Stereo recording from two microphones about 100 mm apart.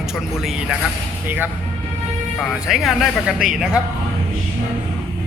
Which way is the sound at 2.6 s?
Centre (ahead or behind).